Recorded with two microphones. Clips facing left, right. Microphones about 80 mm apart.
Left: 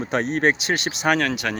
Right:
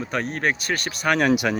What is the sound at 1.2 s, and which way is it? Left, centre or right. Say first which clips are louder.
Speech: right 4 dB; centre.